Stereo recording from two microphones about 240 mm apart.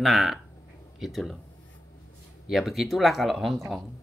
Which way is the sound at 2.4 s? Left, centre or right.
Centre.